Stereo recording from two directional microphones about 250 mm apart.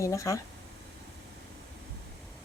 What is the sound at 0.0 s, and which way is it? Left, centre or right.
Speech, centre.